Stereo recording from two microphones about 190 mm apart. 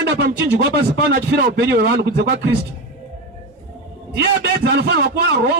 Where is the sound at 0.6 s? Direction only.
60° right (ahead or behind).